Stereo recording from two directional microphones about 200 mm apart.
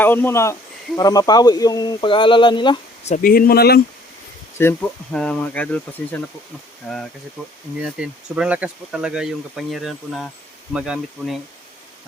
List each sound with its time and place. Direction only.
0.0 s speech: 10° left (ahead or behind)
3.1 s speech: 45° left (ahead or behind)
4.5 s speech: 10° left (ahead or behind)